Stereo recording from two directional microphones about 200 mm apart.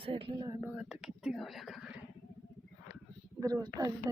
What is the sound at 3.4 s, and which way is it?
Speech, 15° right (ahead or behind).